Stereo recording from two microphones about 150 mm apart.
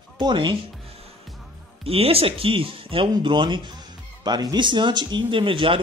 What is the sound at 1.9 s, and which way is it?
Speech, 40° right (ahead or behind).